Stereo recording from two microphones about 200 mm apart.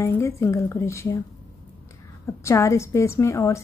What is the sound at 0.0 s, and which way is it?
A woman's voice, 15° left (ahead or behind).